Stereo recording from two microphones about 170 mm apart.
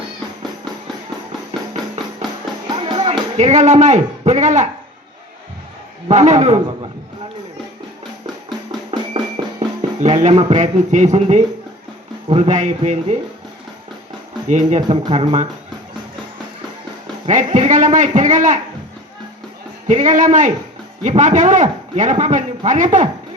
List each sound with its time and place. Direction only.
2.6 s music: 30° right (ahead or behind)
6.1 s a man's voice: 45° right (ahead or behind)
8.4 s music: 25° right (ahead or behind)
10.0 s a man's voice: 40° right (ahead or behind)
14.8 s a man's voice: 30° right (ahead or behind)
17.2 s a man's voice: 45° right (ahead or behind)
19.9 s a man's voice: 45° right (ahead or behind)